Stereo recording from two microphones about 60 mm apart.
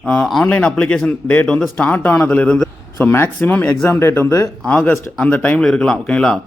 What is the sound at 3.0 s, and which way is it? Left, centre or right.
Speech, left.